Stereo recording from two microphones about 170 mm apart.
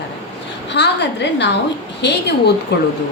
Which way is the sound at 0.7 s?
90° left.